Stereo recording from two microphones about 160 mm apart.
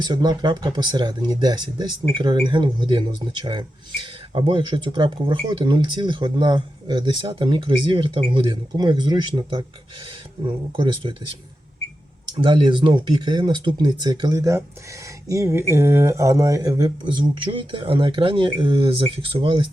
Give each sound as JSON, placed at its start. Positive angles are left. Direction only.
{"t": 0.0, "sound": "speech", "side_deg": -25}
{"t": 11.1, "sound": "speech", "side_deg": -30}
{"t": 12.4, "sound": "speech", "side_deg": -30}